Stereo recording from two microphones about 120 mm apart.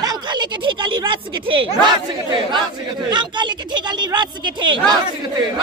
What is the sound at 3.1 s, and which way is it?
A woman's voice, 40° right (ahead or behind).